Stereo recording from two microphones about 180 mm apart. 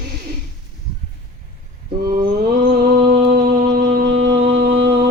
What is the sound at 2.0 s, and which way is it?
Mantra, 55° right (ahead or behind).